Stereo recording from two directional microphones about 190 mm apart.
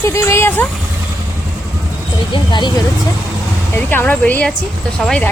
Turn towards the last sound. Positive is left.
turn(degrees=5)  # may be behind; listen again after turning